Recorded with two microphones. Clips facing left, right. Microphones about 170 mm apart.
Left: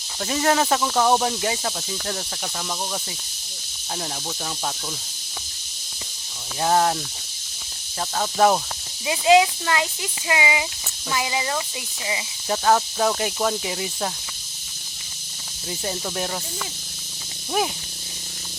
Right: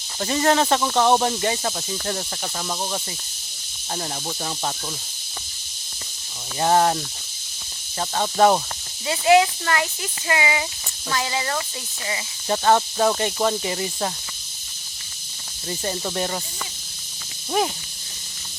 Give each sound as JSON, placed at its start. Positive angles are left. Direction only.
{"t": 0.2, "sound": "speech", "side_deg": 0}
{"t": 6.6, "sound": "speech", "side_deg": 0}
{"t": 8.1, "sound": "speech", "side_deg": 0}
{"t": 9.0, "sound": "speech", "side_deg": 15}
{"t": 12.5, "sound": "speech", "side_deg": 0}
{"t": 15.8, "sound": "speech", "side_deg": 0}